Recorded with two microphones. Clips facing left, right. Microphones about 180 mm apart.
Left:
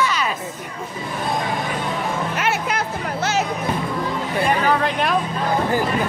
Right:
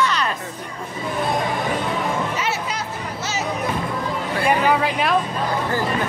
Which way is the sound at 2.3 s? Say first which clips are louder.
Left 3 dB; 55° left (ahead or behind).